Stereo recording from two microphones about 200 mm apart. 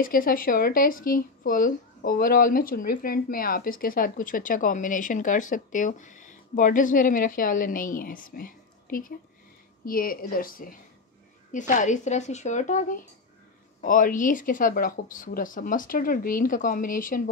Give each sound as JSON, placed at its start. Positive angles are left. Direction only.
{"t": 0.0, "sound": "speech", "side_deg": 45}